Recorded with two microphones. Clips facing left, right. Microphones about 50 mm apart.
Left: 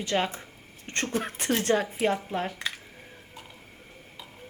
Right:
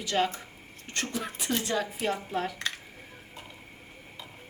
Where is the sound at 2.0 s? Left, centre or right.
Left.